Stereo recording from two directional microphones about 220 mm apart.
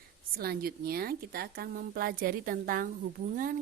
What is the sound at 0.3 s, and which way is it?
A woman's voice, 45° right (ahead or behind).